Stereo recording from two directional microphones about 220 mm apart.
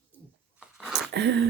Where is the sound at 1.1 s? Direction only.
50° right (ahead or behind).